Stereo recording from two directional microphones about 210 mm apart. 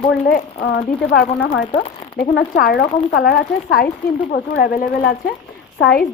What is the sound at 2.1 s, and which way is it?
Speech, 45° left (ahead or behind).